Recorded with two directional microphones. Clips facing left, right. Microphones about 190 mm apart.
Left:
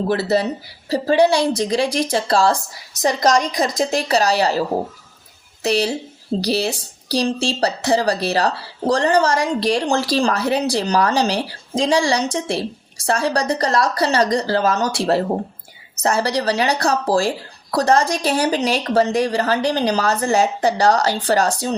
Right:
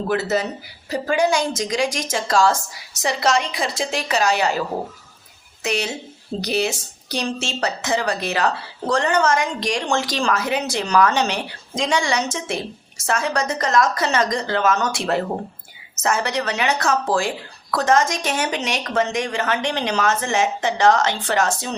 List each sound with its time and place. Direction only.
0.1 s speech: 35° left (ahead or behind)
5.6 s speech: 35° left (ahead or behind)